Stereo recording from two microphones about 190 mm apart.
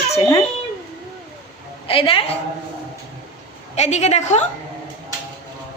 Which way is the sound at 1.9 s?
30° left (ahead or behind).